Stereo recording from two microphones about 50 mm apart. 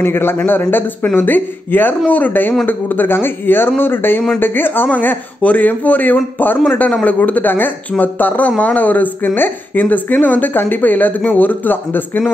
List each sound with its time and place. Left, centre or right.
0.0 s speech: left
4.8 s a man's voice: left
7.2 s speech: left